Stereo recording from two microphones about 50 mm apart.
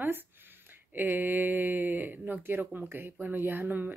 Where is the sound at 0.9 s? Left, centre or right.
Right.